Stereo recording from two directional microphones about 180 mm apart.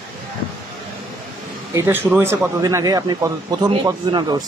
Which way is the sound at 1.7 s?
15° right (ahead or behind).